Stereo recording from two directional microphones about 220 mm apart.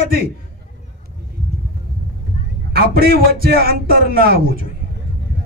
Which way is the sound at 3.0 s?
45° right (ahead or behind).